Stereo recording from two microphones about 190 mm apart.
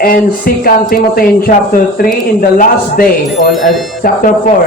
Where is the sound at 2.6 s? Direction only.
50° left (ahead or behind).